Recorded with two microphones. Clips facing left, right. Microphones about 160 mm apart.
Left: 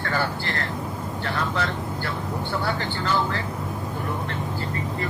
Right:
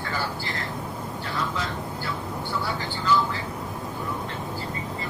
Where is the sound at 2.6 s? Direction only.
65° left (ahead or behind).